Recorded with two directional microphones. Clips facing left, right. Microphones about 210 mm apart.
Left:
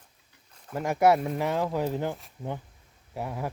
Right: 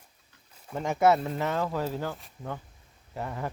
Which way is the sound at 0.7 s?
10° left (ahead or behind).